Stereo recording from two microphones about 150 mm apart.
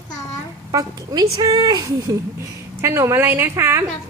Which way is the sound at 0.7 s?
25° right (ahead or behind).